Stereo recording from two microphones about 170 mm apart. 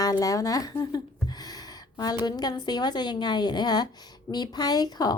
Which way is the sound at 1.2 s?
25° left (ahead or behind).